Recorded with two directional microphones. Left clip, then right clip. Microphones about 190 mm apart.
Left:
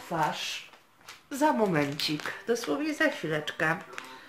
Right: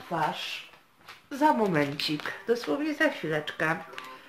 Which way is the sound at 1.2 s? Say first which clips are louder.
Right 2 dB; 5° left (ahead or behind).